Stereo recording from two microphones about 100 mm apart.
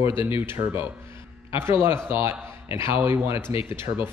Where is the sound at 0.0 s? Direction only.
25° right (ahead or behind).